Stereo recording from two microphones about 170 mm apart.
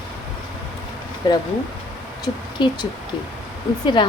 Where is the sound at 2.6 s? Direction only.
25° left (ahead or behind).